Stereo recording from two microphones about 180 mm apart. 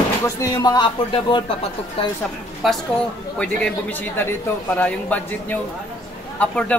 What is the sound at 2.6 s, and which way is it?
A man's voice, centre (ahead or behind).